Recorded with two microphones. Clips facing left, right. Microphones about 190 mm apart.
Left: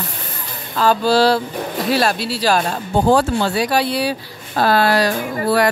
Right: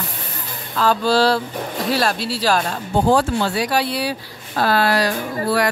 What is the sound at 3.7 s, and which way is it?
Speech, 25° left (ahead or behind).